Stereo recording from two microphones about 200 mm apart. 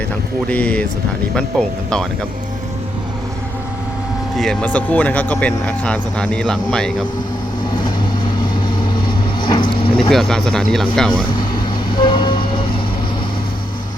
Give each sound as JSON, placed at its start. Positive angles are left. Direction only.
{"t": 0.4, "sound": "speech", "side_deg": 5}
{"t": 4.4, "sound": "speech", "side_deg": 5}
{"t": 9.4, "sound": "vehicle", "side_deg": 25}
{"t": 10.1, "sound": "speech", "side_deg": 0}
{"t": 11.9, "sound": "train", "side_deg": 20}